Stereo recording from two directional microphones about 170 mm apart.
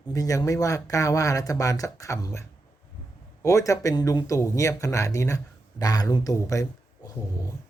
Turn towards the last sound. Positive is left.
turn(degrees=20)  # may be behind; listen again after turning